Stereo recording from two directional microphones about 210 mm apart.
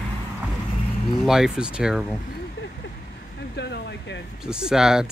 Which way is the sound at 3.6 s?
55° left (ahead or behind).